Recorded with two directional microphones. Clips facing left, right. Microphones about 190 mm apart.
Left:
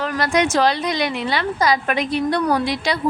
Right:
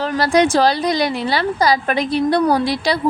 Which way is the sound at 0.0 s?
30° right (ahead or behind).